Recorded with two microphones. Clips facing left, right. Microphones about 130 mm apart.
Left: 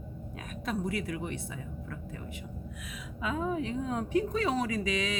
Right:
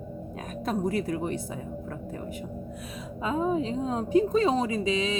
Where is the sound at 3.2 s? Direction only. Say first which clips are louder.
Right 5 dB; 30° right (ahead or behind).